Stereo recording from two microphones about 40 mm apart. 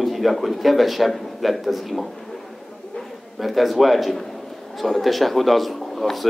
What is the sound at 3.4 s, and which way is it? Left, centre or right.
A man's voice, centre.